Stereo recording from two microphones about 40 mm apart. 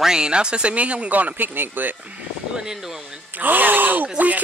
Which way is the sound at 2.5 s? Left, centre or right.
Centre.